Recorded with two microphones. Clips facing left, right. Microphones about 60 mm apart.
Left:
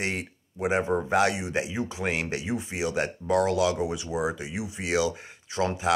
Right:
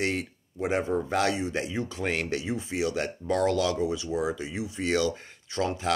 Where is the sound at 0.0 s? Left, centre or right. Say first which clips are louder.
Right 2 dB; left.